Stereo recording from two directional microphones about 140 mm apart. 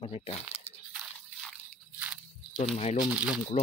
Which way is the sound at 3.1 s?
10° right (ahead or behind).